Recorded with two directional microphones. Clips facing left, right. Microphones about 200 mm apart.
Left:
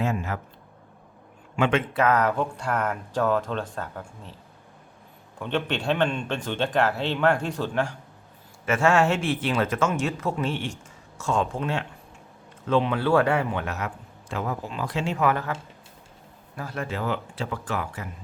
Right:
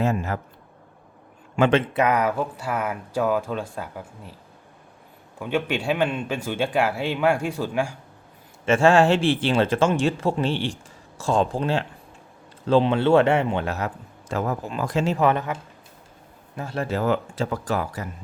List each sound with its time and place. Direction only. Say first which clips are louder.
0.0 s a man's voice: right 3 dB; 40° right (ahead or behind)
1.5 s a man's voice: right 4 dB; 40° right (ahead or behind)
1.9 s a man's voice: right 1 dB; 15° right (ahead or behind)
5.4 s a man's voice: right 2 dB; 10° right (ahead or behind)
8.6 s a man's voice: right 4 dB; 30° right (ahead or behind)
15.3 s speech: right 3 dB; 20° right (ahead or behind)
16.6 s speech: right 4 dB; 25° right (ahead or behind)
16.8 s a man's voice: right 6 dB; 40° right (ahead or behind)